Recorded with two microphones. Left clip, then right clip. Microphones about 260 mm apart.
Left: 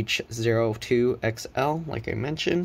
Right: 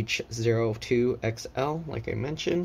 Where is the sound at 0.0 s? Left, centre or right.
Centre.